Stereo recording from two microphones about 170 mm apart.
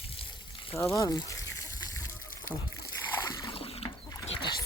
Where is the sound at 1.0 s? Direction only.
20° left (ahead or behind).